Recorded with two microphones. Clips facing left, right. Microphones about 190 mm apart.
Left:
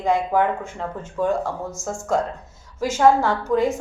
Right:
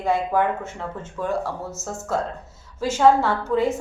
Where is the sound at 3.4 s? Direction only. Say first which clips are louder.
Left 2 dB; 10° left (ahead or behind).